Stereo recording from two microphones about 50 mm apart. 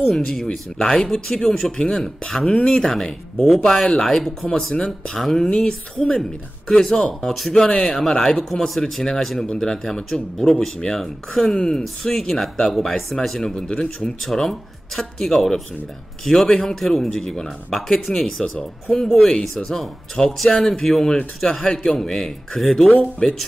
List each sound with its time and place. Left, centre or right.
0.2 s speech: centre
5.5 s speech: left
6.7 s speech: centre
14.2 s speech: centre